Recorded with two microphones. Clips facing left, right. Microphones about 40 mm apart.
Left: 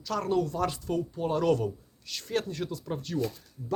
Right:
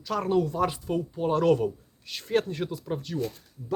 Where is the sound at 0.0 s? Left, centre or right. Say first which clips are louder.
Right 3 dB; centre.